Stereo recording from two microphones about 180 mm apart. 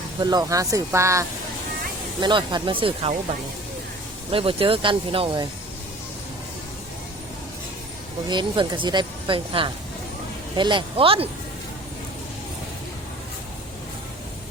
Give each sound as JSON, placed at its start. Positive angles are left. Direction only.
{"t": 0.2, "sound": "speech", "side_deg": -20}
{"t": 2.2, "sound": "speech", "side_deg": -25}
{"t": 4.3, "sound": "speech", "side_deg": -30}
{"t": 8.3, "sound": "speech", "side_deg": -25}